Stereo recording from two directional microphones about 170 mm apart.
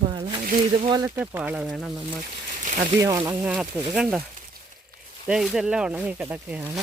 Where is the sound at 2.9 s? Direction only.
25° right (ahead or behind).